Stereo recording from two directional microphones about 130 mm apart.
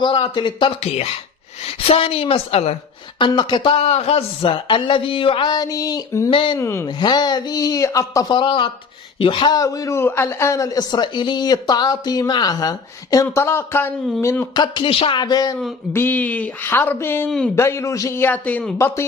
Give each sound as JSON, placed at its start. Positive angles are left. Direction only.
{"t": 0.0, "sound": "a woman's voice", "side_deg": 40}
{"t": 3.2, "sound": "speech", "side_deg": 40}
{"t": 6.6, "sound": "a man's voice", "side_deg": 20}
{"t": 7.0, "sound": "a man's voice", "side_deg": 35}
{"t": 14.5, "sound": "speech", "side_deg": 35}
{"t": 15.9, "sound": "a man's voice", "side_deg": 15}